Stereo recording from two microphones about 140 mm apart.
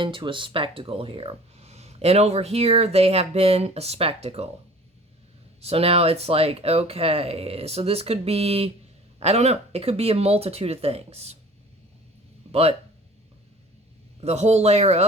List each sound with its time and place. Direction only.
0.0 s speech: 35° right (ahead or behind)
5.5 s speech: 45° right (ahead or behind)
12.5 s speech: 45° right (ahead or behind)
14.2 s speech: 50° right (ahead or behind)